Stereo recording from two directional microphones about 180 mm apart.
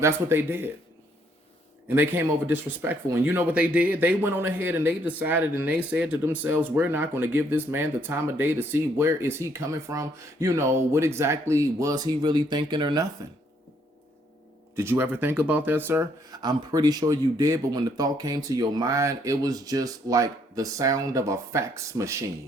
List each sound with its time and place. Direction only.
0.0 s speech: 15° right (ahead or behind)
1.9 s speech: 10° right (ahead or behind)
14.8 s speech: 10° right (ahead or behind)